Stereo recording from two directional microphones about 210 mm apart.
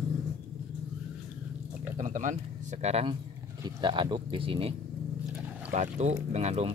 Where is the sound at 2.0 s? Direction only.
35° right (ahead or behind).